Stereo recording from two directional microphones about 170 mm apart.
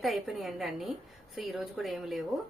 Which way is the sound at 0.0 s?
Centre (ahead or behind).